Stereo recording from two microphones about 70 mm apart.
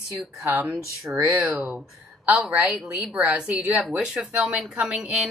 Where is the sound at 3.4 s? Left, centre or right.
Centre.